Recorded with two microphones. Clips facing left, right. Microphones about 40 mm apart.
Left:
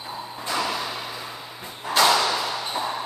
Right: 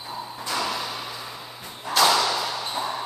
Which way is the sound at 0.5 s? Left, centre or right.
Centre.